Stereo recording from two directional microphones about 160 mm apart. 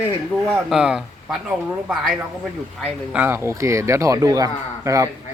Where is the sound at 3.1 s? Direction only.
10° right (ahead or behind).